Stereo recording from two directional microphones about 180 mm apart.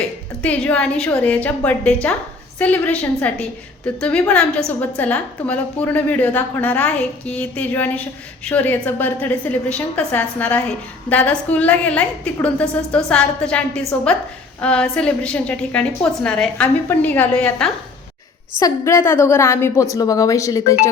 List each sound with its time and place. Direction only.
0.4 s a woman's voice: 5° left (ahead or behind)